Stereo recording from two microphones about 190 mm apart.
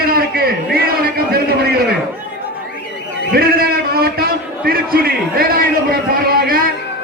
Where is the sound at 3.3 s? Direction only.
55° right (ahead or behind).